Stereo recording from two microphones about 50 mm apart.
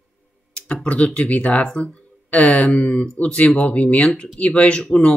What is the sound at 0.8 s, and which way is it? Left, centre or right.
Speech, left.